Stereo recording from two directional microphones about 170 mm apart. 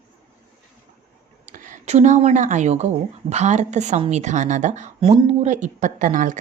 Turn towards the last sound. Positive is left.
turn(degrees=-50)  # may be behind; listen again after turning